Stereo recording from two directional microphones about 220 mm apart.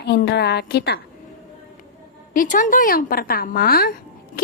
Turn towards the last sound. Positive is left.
turn(degrees=45)  # may be behind; listen again after turning